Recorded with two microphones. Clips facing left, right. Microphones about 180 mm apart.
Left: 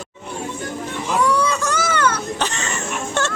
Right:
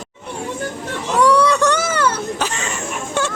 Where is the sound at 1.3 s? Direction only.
70° right (ahead or behind).